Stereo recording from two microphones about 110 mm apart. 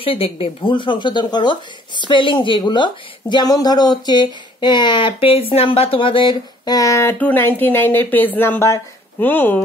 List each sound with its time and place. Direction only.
0.0 s speech: 60° left (ahead or behind)
5.5 s speech: 65° left (ahead or behind); by 7.2 s 25° left (ahead or behind)
7.2 s speech: 15° left (ahead or behind)